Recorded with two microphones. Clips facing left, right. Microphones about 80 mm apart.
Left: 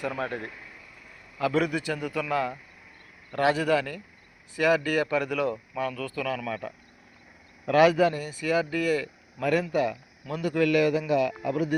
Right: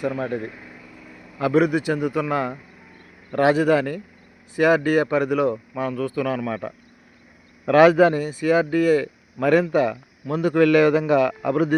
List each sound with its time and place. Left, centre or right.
0.0 s speech: centre
1.5 s speech: centre; by 8.3 s right
8.3 s a man's voice: right